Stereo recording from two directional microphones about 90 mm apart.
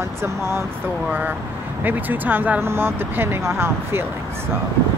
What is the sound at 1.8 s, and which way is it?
Speech, 20° right (ahead or behind).